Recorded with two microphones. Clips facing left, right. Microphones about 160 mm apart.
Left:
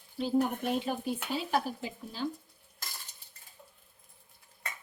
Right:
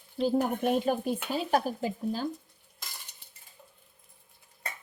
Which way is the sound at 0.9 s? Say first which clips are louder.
Right 4 dB; 45° right (ahead or behind).